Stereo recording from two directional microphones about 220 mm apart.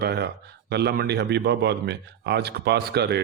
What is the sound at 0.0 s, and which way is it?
A man's voice, 45° right (ahead or behind).